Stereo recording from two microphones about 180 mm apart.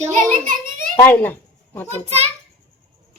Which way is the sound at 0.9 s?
10° left (ahead or behind).